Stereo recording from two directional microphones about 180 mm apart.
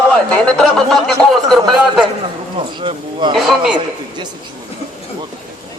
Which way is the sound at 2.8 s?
30° right (ahead or behind).